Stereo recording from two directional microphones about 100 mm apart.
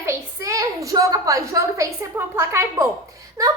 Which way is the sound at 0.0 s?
30° right (ahead or behind).